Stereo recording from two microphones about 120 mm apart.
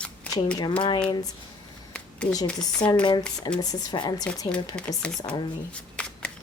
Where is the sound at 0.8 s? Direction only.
40° left (ahead or behind).